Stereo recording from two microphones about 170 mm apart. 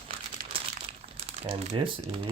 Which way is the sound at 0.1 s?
35° right (ahead or behind).